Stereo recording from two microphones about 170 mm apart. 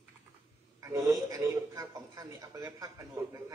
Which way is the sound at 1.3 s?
20° right (ahead or behind).